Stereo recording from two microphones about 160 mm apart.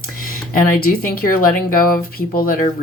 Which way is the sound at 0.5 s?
60° left (ahead or behind).